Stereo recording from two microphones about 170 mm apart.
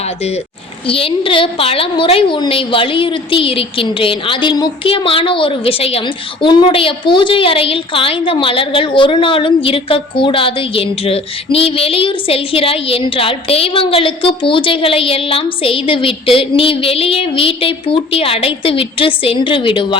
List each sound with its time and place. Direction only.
0.9 s a woman's voice: 30° left (ahead or behind)